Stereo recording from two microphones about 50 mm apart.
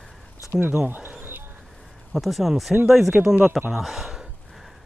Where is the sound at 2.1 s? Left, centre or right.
Centre.